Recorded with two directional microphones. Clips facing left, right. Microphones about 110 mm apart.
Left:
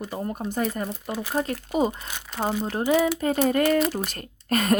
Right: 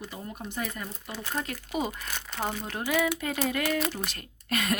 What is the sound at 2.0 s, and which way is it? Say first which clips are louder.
Speech: left 1 dB; 15° left (ahead or behind).